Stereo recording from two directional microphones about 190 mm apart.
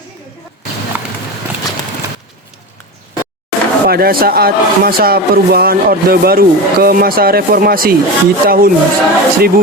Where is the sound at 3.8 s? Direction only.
50° right (ahead or behind).